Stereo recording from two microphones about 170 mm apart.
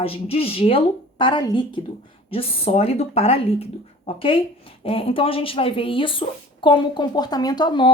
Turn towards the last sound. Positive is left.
turn(degrees=25)  # may be behind; listen again after turning